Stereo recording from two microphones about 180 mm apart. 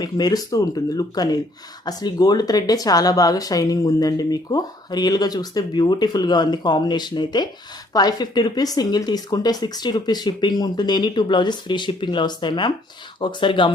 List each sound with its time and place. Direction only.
0.0 s speech: 20° left (ahead or behind)